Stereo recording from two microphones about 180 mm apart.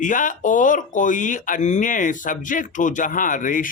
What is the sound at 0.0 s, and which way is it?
Speech, 45° left (ahead or behind).